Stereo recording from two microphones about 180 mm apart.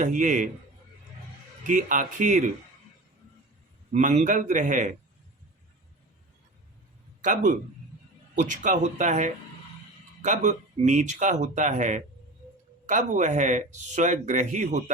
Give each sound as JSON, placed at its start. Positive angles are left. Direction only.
{"t": 0.0, "sound": "speech", "side_deg": -45}
{"t": 1.6, "sound": "speech", "side_deg": -45}
{"t": 3.9, "sound": "speech", "side_deg": -45}
{"t": 7.2, "sound": "a man's voice", "side_deg": -45}